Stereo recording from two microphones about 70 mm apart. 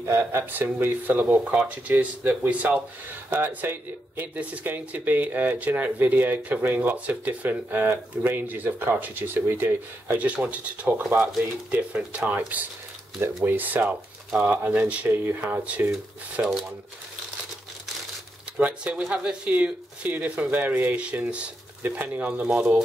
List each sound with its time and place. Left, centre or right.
0.0 s speech: right
0.5 s speech: right
10.1 s speech: centre
18.6 s speech: centre